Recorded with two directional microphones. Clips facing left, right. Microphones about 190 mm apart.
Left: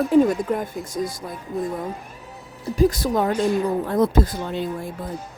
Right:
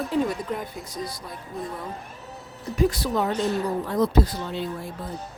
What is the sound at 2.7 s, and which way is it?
Speech, 40° left (ahead or behind).